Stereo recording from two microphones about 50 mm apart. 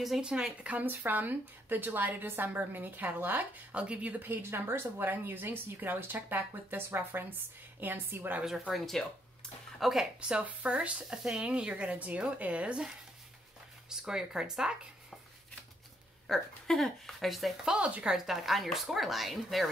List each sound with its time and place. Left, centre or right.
0.2 s speech: centre
0.8 s speech: right
3.7 s speech: right
4.2 s speech: right
8.7 s speech: centre
10.4 s speech: right
11.9 s speech: right; by 14.8 s centre
16.3 s speech: centre
17.7 s speech: right
18.1 s speech: centre